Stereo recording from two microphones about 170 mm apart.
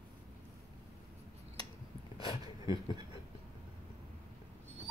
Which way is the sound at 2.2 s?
30° left (ahead or behind).